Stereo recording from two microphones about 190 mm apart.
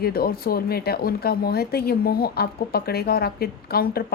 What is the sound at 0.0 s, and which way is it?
A woman's voice, 55° left (ahead or behind).